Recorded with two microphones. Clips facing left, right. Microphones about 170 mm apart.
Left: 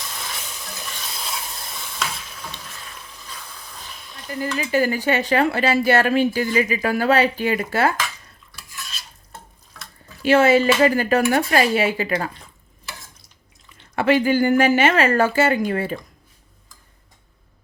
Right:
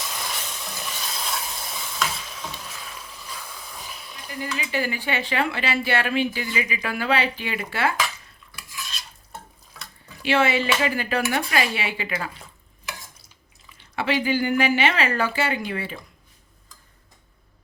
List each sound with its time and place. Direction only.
0.0 s stir: centre (ahead or behind)
4.5 s speech: 45° left (ahead or behind)
10.2 s speech: 40° left (ahead or behind)
13.9 s speech: 50° left (ahead or behind)